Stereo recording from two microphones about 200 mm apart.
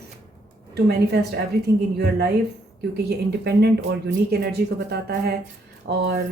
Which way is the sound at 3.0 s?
55° right (ahead or behind).